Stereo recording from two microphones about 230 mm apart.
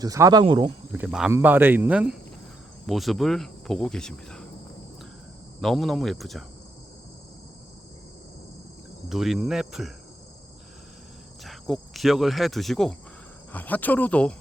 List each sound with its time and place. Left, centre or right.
0.0 s speech: centre
0.9 s speech: centre
5.5 s speech: centre
9.0 s speech: centre
11.4 s cricket: centre
13.5 s speech: centre